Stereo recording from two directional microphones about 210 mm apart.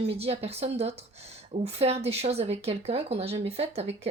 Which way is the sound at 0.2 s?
30° right (ahead or behind).